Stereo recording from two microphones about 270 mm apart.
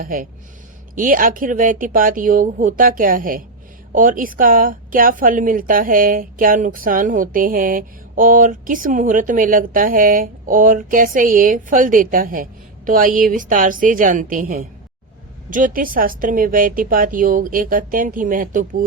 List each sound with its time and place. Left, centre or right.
0.0 s speech: right